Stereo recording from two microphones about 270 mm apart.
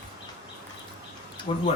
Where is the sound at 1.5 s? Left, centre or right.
Left.